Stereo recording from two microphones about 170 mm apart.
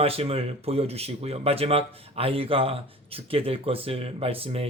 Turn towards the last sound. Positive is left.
turn(degrees=-35)  # may be behind; listen again after turning